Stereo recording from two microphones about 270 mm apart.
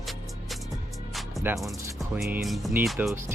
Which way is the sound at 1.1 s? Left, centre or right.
Centre.